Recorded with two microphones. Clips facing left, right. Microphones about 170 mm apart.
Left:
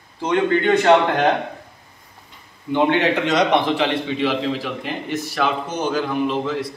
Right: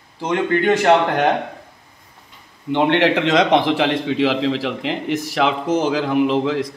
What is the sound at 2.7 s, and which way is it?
A man's voice, 85° right.